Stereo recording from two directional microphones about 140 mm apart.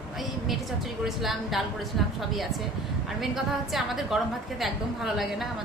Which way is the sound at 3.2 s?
Centre (ahead or behind).